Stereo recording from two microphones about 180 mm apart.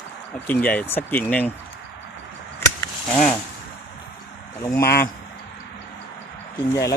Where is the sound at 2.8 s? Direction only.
5° left (ahead or behind).